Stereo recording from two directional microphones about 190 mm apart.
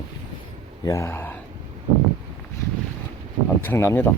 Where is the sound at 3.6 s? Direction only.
15° left (ahead or behind).